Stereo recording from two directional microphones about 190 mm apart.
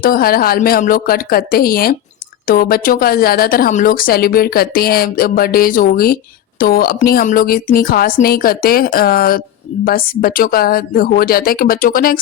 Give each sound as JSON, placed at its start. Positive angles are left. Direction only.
{"t": 0.0, "sound": "a woman's voice", "side_deg": 50}